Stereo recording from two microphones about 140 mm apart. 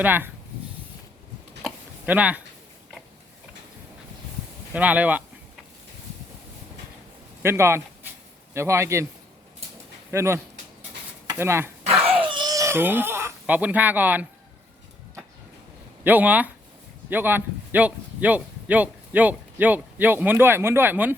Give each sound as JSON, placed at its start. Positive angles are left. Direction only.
{"t": 0.0, "sound": "speech", "side_deg": -15}
{"t": 1.6, "sound": "a sound", "side_deg": -10}
{"t": 4.7, "sound": "speech", "side_deg": -10}
{"t": 7.4, "sound": "a man's voice", "side_deg": -20}
{"t": 10.1, "sound": "a man's voice", "side_deg": -20}
{"t": 11.8, "sound": "baby cry", "side_deg": -45}
{"t": 16.0, "sound": "speech", "side_deg": -10}